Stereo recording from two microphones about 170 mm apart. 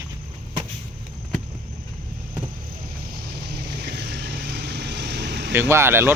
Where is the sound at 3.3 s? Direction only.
75° right (ahead or behind).